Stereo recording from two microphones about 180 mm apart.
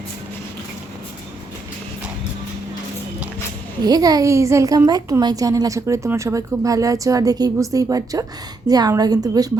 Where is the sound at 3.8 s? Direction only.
20° right (ahead or behind).